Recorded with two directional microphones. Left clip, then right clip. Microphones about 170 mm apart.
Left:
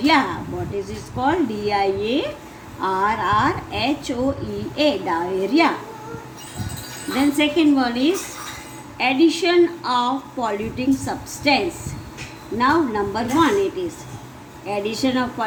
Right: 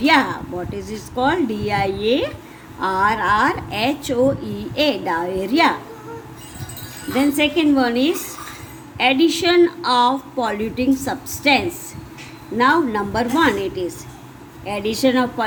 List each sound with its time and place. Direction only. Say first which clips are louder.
0.0 s a woman's voice: right 2 dB; 40° right (ahead or behind)
7.2 s a woman's voice: right 1 dB; 35° right (ahead or behind)